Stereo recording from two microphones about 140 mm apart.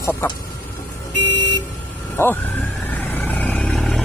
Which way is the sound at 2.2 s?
15° left (ahead or behind).